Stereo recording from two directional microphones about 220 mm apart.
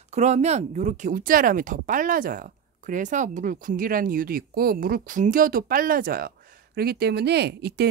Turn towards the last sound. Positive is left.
turn(degrees=-50)  # may be behind; listen again after turning